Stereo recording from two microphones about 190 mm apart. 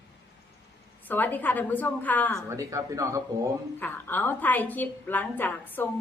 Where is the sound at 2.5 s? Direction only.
15° right (ahead or behind).